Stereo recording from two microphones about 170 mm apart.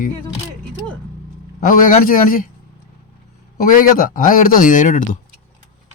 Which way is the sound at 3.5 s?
55° left (ahead or behind).